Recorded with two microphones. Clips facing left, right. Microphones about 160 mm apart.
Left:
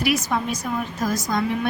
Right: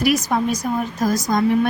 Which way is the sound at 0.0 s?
40° right (ahead or behind).